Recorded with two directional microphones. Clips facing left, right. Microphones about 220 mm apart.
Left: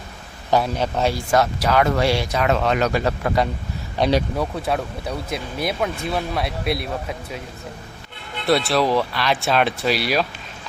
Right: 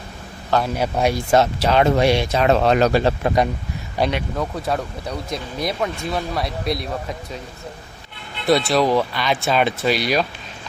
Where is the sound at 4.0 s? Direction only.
5° right (ahead or behind).